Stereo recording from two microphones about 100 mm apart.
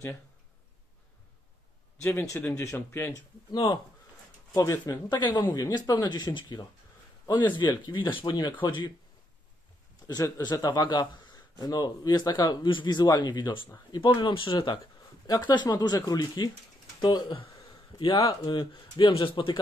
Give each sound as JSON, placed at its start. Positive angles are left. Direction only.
{"t": 2.0, "sound": "speech", "side_deg": 30}
{"t": 4.6, "sound": "speech", "side_deg": 35}
{"t": 5.1, "sound": "speech", "side_deg": 50}
{"t": 10.0, "sound": "speech", "side_deg": 40}
{"t": 15.2, "sound": "speech", "side_deg": 40}
{"t": 17.6, "sound": "a sound", "side_deg": 55}
{"t": 18.5, "sound": "speech", "side_deg": 60}